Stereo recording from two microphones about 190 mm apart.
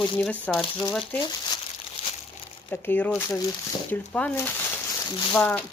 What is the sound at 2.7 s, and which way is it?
Speech, 10° left (ahead or behind).